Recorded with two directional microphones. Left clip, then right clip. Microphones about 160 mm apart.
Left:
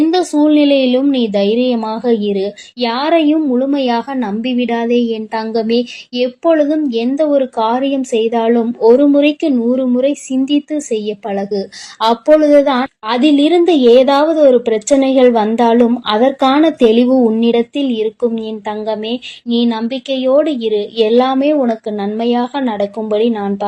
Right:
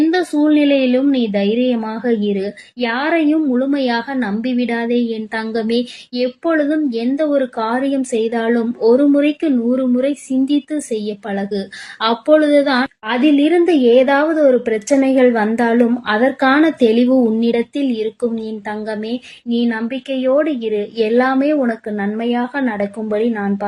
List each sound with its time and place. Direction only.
0.1 s a woman's voice: 15° left (ahead or behind)
13.1 s a woman's voice: 20° left (ahead or behind)
19.0 s speech: 20° right (ahead or behind)
19.6 s a woman's voice: 20° left (ahead or behind)
21.2 s a woman's voice: 10° left (ahead or behind)